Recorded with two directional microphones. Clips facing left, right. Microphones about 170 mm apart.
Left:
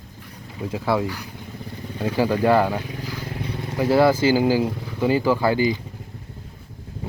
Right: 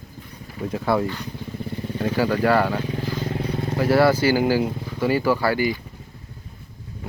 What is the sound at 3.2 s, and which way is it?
Vehicle, 30° right (ahead or behind).